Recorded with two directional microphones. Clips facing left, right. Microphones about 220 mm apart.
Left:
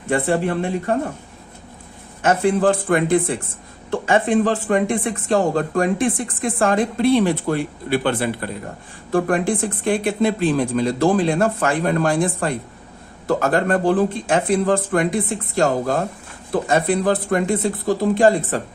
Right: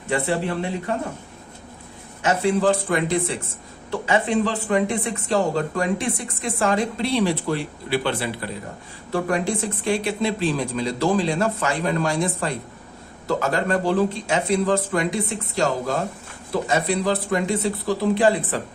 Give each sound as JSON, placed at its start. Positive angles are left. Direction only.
{"t": 0.1, "sound": "speech", "side_deg": 50}
{"t": 2.2, "sound": "speech", "side_deg": 50}